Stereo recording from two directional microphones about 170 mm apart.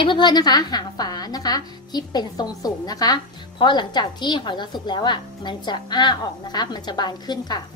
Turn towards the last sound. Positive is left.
turn(degrees=25)  # may be behind; listen again after turning